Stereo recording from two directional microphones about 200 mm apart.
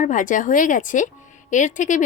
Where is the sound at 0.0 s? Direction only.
40° left (ahead or behind).